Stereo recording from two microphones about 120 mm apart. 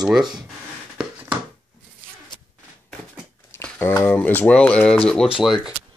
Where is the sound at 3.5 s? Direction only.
20° left (ahead or behind).